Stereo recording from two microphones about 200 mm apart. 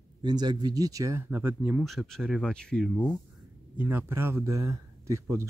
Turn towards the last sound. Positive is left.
turn(degrees=-15)  # may be behind; listen again after turning